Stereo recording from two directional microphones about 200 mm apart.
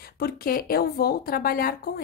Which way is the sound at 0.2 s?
50° left (ahead or behind).